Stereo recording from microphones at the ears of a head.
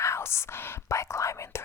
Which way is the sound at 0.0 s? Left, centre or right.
Left.